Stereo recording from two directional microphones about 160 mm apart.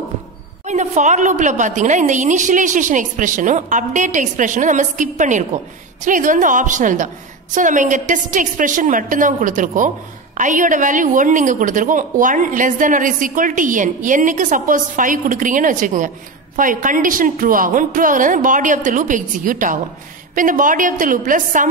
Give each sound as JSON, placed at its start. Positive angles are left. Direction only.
{"t": 0.7, "sound": "a woman's voice", "side_deg": -45}